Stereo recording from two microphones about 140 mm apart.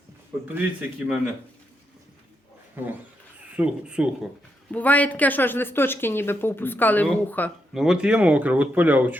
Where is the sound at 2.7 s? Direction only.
15° right (ahead or behind).